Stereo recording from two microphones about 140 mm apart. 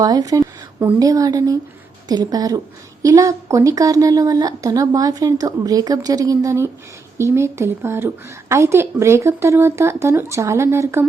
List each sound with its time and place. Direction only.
0.0 s a woman's voice: 25° right (ahead or behind)